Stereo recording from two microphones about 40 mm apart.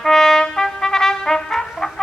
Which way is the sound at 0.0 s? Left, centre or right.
Centre.